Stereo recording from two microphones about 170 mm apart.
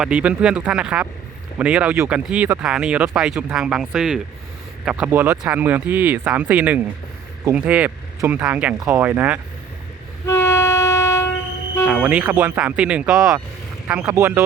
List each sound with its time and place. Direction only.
0.0 s speech: 5° right (ahead or behind)
10.2 s train: 15° left (ahead or behind)
12.0 s speech: 10° right (ahead or behind)
13.8 s speech: 15° right (ahead or behind)